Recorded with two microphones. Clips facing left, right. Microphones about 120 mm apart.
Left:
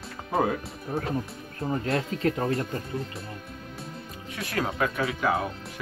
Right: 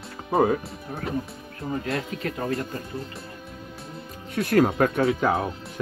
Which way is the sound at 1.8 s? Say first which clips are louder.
Left 3 dB; 30° left (ahead or behind).